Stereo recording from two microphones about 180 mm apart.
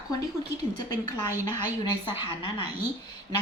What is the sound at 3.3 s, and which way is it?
Speech, 25° left (ahead or behind).